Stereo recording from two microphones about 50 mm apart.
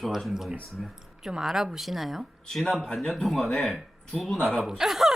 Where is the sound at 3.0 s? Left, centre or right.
Centre.